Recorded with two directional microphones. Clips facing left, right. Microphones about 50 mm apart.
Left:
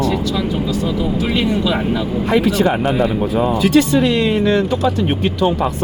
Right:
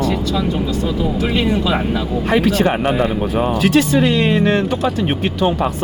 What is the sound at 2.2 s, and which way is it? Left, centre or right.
Speech, right.